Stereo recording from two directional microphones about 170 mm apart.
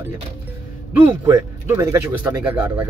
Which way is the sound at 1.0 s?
15° right (ahead or behind).